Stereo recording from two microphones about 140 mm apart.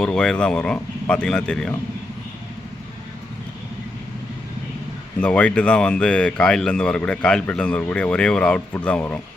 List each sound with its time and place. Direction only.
0.0 s speech: 5° left (ahead or behind)
5.2 s speech: 10° left (ahead or behind)